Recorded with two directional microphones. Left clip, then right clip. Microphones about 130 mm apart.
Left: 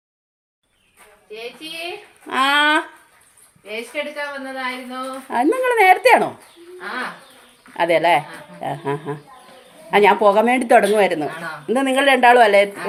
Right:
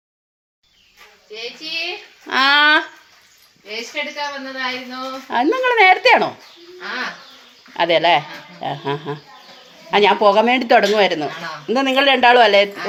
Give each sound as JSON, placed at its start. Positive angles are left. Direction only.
{"t": 1.3, "sound": "speech", "side_deg": 5}
{"t": 4.5, "sound": "speech", "side_deg": 10}
{"t": 7.7, "sound": "speech", "side_deg": 10}